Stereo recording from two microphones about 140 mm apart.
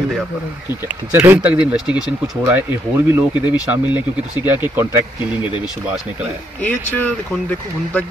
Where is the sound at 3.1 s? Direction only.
20° right (ahead or behind).